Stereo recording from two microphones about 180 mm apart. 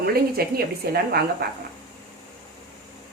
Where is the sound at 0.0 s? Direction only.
60° right (ahead or behind).